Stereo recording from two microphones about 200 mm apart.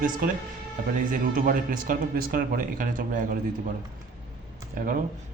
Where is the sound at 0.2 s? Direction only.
45° right (ahead or behind).